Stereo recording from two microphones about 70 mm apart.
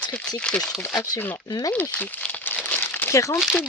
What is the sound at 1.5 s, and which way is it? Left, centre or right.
Speech, left.